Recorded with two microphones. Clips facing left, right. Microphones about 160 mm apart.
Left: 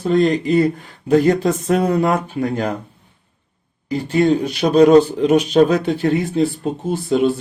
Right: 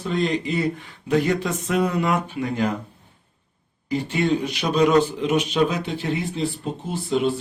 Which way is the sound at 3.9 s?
40° left (ahead or behind).